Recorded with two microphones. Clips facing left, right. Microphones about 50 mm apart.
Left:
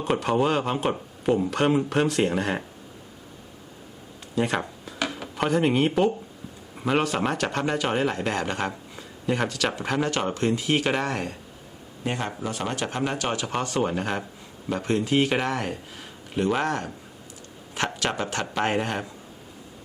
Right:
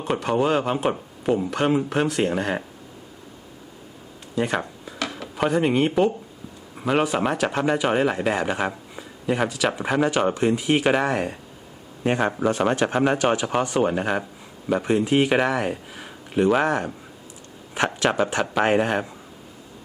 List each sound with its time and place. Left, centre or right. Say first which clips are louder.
0.0 s speech: right 1 dB; centre
4.4 s speech: right 1 dB; centre
4.9 s a sound: even; centre
5.4 s speech: right 2 dB; centre
6.7 s a sound: right 2 dB; centre
7.0 s speech: right 3 dB; centre
12.4 s speech: right 9 dB; right
13.2 s speech: right 6 dB; centre
15.6 s a sound: right 4 dB; right
16.6 s speech: right 4 dB; centre